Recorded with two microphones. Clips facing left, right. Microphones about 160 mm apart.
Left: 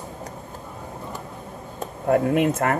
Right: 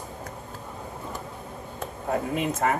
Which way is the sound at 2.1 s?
60° left (ahead or behind).